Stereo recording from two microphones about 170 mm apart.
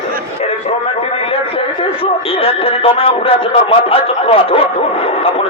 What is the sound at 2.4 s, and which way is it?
Speech, 35° left (ahead or behind).